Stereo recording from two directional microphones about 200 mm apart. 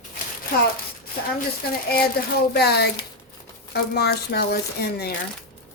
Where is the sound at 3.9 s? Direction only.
55° left (ahead or behind).